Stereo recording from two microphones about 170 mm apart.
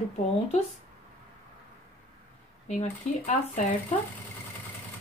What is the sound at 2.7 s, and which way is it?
Speech, 45° left (ahead or behind).